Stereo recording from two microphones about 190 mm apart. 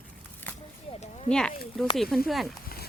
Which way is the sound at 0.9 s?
30° left (ahead or behind).